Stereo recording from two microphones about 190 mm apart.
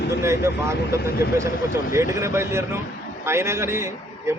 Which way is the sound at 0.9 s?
55° left (ahead or behind).